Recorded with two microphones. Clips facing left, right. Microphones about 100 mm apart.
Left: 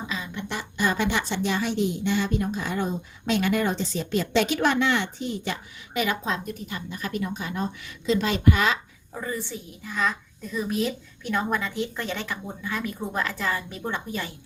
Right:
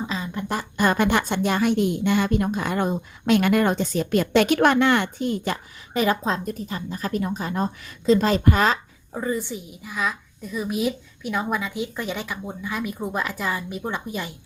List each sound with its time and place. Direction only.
0.1 s a woman's voice: 40° right (ahead or behind)
5.9 s a woman's voice: 35° right (ahead or behind)
9.1 s a woman's voice: 25° right (ahead or behind)